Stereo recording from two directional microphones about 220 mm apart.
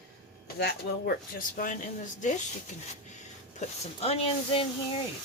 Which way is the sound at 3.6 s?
25° left (ahead or behind).